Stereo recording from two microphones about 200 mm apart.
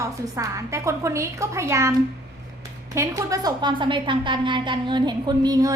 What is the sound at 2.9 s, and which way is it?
A woman's voice, 15° right (ahead or behind).